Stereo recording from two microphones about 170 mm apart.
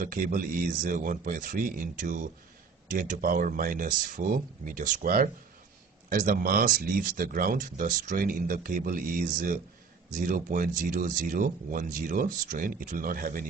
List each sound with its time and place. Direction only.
0.0 s speech: 55° right (ahead or behind)